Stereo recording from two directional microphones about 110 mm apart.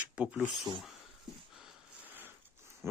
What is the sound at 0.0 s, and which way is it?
Speech, 10° right (ahead or behind).